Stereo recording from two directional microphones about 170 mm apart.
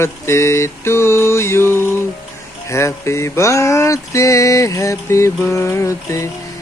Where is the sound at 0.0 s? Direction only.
15° left (ahead or behind).